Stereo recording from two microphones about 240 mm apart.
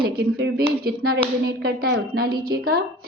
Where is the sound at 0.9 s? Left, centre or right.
Right.